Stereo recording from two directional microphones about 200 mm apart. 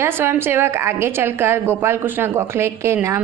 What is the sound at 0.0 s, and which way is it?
A woman's voice, 10° right (ahead or behind).